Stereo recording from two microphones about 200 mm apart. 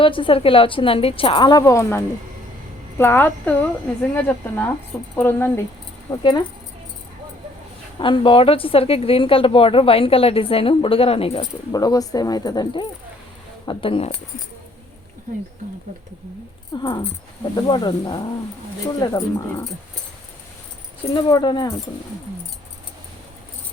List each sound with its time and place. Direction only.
0.0 s a woman's voice: 25° left (ahead or behind)
7.9 s a woman's voice: 25° left (ahead or behind)
11.7 s a woman's voice: 20° left (ahead or behind)
16.7 s a woman's voice: 25° left (ahead or behind)
21.1 s a woman's voice: 20° left (ahead or behind)